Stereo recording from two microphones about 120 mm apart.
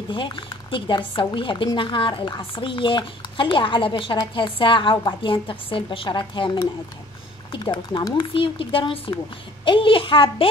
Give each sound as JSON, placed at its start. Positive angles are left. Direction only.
{"t": 0.1, "sound": "speech", "side_deg": 45}